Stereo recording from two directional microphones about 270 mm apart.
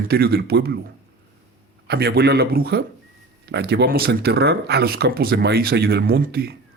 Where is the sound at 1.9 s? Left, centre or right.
Right.